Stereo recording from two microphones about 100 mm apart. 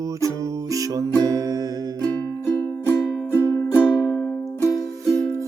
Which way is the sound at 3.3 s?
20° left (ahead or behind).